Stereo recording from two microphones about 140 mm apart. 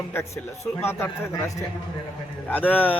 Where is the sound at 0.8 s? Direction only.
15° left (ahead or behind).